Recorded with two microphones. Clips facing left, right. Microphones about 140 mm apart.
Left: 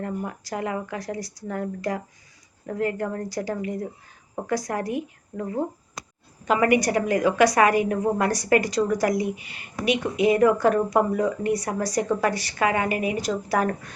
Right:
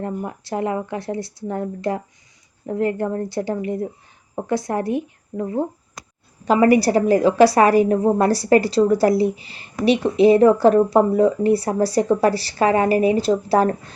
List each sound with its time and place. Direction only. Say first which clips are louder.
0.3 s a woman's voice: right 5 dB; 25° right (ahead or behind)